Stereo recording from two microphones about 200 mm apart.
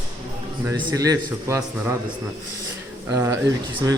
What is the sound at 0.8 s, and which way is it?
Speech, 15° right (ahead or behind).